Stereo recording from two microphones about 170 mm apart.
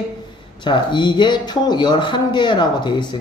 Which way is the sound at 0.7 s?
25° left (ahead or behind).